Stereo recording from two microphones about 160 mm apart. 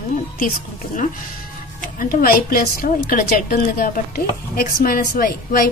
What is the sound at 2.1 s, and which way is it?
A woman's voice, 65° left (ahead or behind).